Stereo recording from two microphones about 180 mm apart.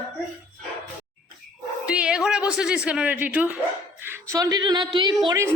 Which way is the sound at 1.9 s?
5° right (ahead or behind).